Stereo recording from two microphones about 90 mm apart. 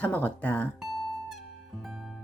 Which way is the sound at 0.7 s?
5° right (ahead or behind).